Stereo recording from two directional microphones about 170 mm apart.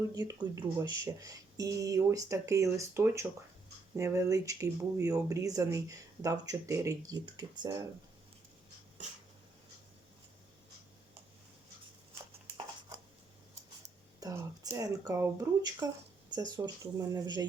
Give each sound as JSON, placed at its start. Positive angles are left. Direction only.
{"t": 0.1, "sound": "speech", "side_deg": -20}
{"t": 14.2, "sound": "speech", "side_deg": -20}